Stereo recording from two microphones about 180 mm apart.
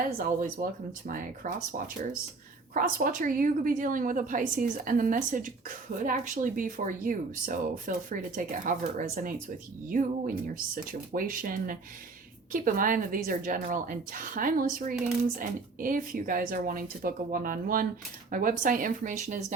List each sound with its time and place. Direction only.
0.2 s a woman's voice: 50° right (ahead or behind)
2.7 s a woman's voice: 50° right (ahead or behind)